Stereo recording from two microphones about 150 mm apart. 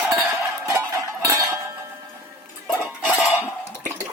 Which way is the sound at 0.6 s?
20° right (ahead or behind).